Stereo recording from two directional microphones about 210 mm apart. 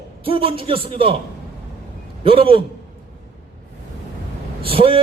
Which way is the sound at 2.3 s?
25° right (ahead or behind).